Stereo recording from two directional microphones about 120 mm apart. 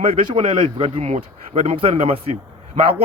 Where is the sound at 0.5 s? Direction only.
45° right (ahead or behind).